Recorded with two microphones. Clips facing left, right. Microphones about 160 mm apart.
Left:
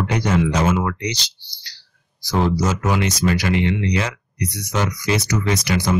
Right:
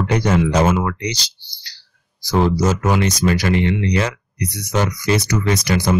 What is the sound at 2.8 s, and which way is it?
Speech, 40° right (ahead or behind).